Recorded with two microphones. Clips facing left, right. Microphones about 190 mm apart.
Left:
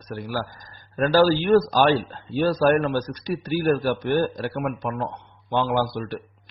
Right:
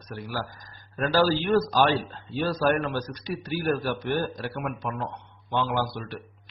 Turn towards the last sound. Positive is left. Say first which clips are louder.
# left 5 dB
turn(degrees=40)  # may be behind; listen again after turning